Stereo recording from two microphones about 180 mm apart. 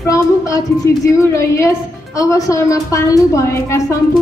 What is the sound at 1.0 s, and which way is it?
A woman's voice, 15° left (ahead or behind).